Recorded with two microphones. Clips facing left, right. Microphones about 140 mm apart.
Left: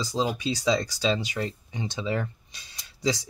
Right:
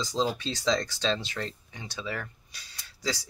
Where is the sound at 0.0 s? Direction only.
10° left (ahead or behind).